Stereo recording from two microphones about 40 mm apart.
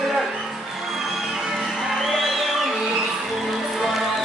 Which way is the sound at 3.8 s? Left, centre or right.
Centre.